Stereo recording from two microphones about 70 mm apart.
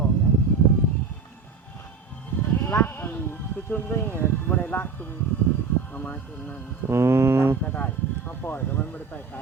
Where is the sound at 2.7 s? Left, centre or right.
Left.